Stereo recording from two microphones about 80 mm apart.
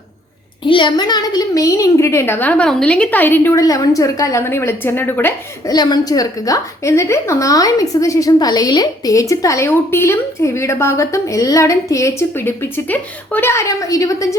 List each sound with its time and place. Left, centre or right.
0.6 s a woman's voice: left
2.6 s speech: centre; by 3.6 s left
3.6 s a woman's voice: left
4.4 s speech: left
5.6 s a woman's voice: left
9.6 s a woman's voice: left
12.4 s speech: left
13.5 s a woman's voice: left